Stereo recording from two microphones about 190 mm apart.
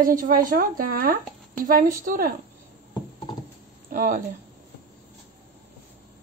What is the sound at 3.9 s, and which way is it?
Speech, 45° right (ahead or behind).